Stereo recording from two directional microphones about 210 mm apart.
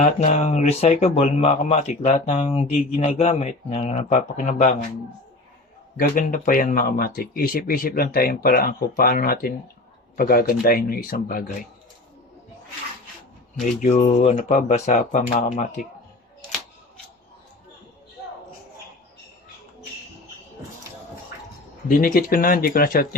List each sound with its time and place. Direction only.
0.0 s speech: 35° left (ahead or behind)
6.4 s speech: 40° left (ahead or behind)
13.7 s speech: 35° left (ahead or behind)
21.8 s speech: 40° left (ahead or behind)